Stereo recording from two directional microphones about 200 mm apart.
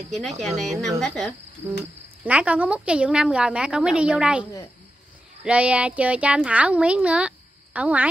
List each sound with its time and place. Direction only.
0.1 s speech: centre (ahead or behind)